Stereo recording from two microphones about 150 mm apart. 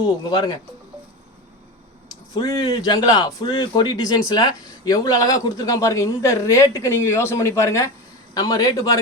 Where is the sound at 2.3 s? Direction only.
25° left (ahead or behind).